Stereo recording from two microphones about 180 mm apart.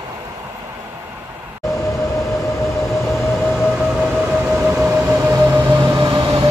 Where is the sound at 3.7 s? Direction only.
5° right (ahead or behind).